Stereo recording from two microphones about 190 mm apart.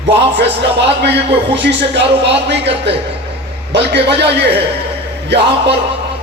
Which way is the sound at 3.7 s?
65° right (ahead or behind).